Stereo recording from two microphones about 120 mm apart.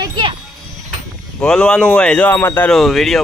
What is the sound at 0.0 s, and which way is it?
Wind chime, 40° right (ahead or behind).